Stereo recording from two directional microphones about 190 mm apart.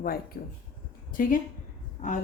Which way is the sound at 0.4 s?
55° left (ahead or behind).